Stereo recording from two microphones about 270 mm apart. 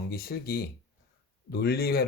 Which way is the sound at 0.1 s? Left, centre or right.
Left.